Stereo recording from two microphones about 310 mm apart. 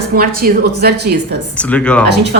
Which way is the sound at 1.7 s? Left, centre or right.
Centre.